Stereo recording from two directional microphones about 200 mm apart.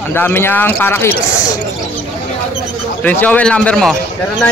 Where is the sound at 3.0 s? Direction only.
10° left (ahead or behind).